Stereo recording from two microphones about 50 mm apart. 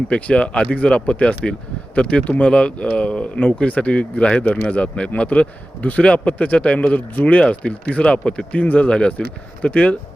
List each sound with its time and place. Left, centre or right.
0.1 s speech: left